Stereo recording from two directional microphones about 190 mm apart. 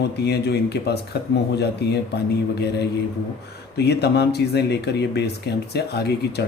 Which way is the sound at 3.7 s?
60° left (ahead or behind).